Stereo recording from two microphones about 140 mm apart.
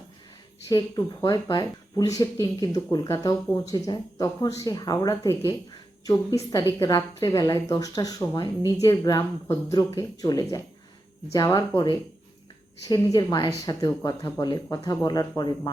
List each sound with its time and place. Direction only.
0.7 s speech: 25° left (ahead or behind)
12.9 s a woman's voice: 30° left (ahead or behind)